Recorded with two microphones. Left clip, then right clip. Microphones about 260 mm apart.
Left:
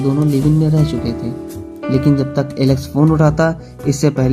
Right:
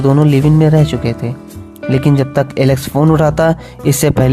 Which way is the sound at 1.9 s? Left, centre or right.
Right.